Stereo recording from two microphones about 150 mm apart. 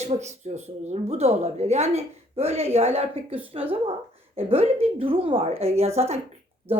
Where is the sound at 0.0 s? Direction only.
50° right (ahead or behind).